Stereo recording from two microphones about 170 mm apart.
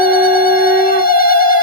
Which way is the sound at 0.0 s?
60° left (ahead or behind).